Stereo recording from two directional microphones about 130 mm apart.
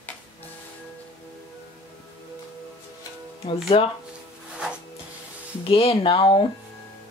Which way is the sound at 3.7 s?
50° left (ahead or behind).